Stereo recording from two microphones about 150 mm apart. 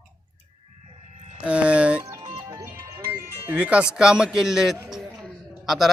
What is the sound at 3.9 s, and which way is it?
A man's voice, 5° right (ahead or behind).